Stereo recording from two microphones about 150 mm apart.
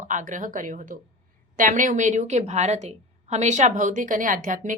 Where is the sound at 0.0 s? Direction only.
55° right (ahead or behind).